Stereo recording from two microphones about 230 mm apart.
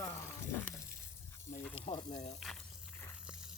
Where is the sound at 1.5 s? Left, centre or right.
Left.